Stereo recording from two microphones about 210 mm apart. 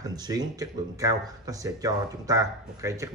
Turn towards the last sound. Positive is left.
turn(degrees=-15)  # may be behind; listen again after turning